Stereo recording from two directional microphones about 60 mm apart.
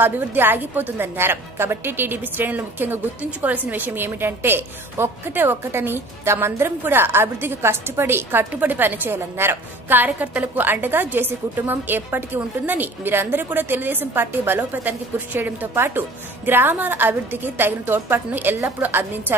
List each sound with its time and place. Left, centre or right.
0.0 s a woman's voice: right